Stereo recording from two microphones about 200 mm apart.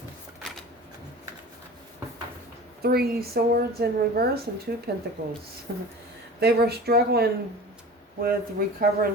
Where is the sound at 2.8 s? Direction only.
50° right (ahead or behind).